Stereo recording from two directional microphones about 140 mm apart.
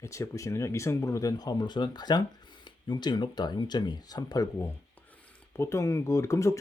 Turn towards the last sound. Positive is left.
turn(degrees=20)  # may be behind; listen again after turning